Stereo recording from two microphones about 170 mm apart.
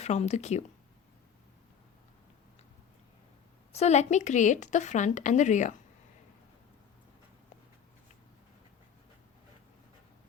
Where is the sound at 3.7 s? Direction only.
40° left (ahead or behind).